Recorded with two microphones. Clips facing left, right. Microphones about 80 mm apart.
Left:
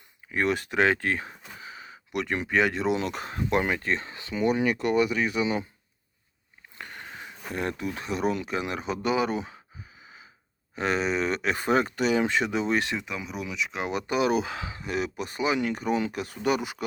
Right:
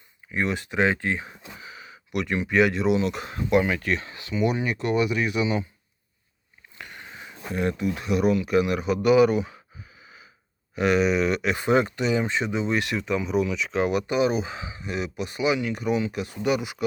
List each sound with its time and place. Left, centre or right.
0.3 s speech: left
1.6 s speech: left
6.7 s speech: left
10.8 s speech: left
13.1 s speech: centre
14.1 s speech: left